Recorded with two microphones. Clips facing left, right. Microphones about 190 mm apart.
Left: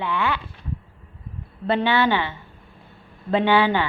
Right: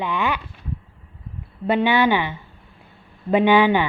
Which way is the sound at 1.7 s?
15° right (ahead or behind).